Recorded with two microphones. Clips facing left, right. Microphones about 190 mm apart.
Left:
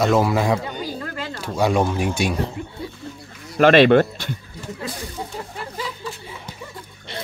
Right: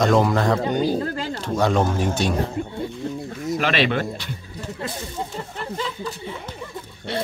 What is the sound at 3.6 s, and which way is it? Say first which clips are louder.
Speech: left 11 dB; 50° left (ahead or behind).